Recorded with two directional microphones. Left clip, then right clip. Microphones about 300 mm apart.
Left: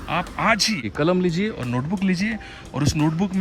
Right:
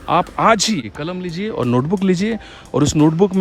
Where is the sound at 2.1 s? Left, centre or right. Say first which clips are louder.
Right 5 dB; right.